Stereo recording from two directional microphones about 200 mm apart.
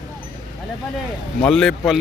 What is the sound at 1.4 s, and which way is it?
Speech, 5° left (ahead or behind).